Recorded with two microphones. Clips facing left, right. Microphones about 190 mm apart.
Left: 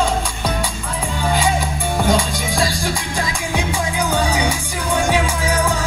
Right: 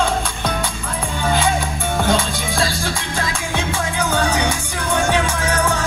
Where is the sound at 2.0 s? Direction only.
15° left (ahead or behind).